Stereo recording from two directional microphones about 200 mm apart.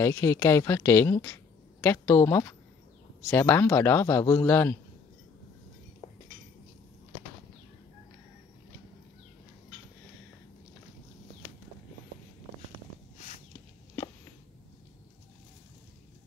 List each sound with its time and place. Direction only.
0.0 s speech: 15° left (ahead or behind)
6.0 s cutlery: 20° left (ahead or behind)